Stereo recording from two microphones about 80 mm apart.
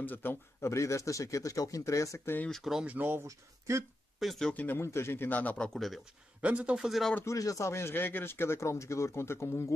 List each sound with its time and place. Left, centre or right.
0.0 s speech: left
2.5 s speech: centre
2.9 s speech: right
3.3 s speech: right
4.2 s speech: centre
4.7 s a man's voice: left
5.7 s speech: centre
6.4 s speech: centre
6.9 s speech: centre
7.2 s speech: left